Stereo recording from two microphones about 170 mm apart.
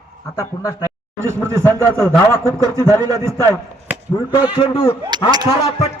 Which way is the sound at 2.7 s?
15° right (ahead or behind).